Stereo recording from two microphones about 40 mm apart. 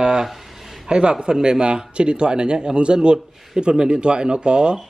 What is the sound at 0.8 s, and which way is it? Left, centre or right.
A man's voice, right.